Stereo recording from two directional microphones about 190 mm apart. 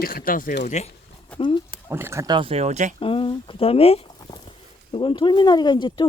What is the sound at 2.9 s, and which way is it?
Speech, 30° left (ahead or behind).